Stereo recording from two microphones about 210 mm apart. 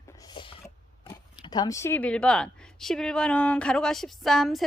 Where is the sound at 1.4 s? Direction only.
20° left (ahead or behind).